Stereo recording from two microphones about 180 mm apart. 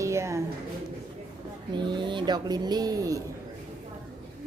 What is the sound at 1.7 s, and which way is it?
Speech, 25° right (ahead or behind).